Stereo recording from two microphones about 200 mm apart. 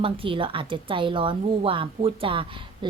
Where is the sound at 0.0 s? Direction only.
25° right (ahead or behind).